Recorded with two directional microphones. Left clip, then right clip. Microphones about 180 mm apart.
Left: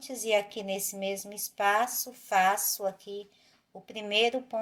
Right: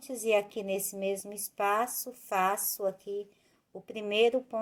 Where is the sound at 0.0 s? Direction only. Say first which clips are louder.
Even; 45° right (ahead or behind).